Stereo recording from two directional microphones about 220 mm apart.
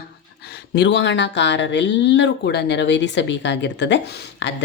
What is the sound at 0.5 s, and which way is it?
Speech, 50° left (ahead or behind).